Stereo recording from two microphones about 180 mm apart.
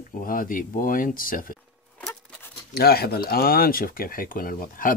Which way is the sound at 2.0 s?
5° left (ahead or behind).